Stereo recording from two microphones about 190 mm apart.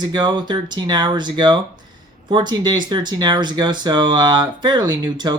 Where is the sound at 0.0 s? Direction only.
20° right (ahead or behind).